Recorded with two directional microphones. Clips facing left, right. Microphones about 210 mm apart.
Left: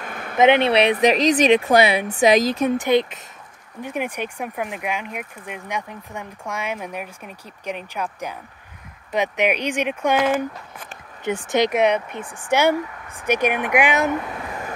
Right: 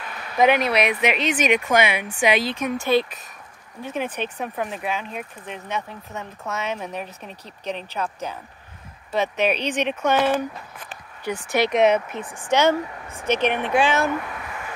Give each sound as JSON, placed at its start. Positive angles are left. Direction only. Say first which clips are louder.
{"t": 0.0, "sound": "a sound", "louder": "left 4 dB", "side_deg": 50}
{"t": 0.4, "sound": "speech", "louder": "left 3 dB", "side_deg": 25}
{"t": 2.8, "sound": "speech", "louder": "left 2 dB", "side_deg": 20}
{"t": 11.7, "sound": "speech", "louder": "right 1 dB", "side_deg": 0}
{"t": 12.4, "sound": "speech", "louder": "even", "side_deg": 15}